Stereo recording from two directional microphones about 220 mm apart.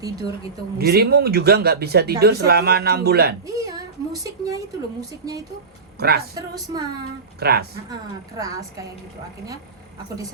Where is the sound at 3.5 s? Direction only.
15° right (ahead or behind).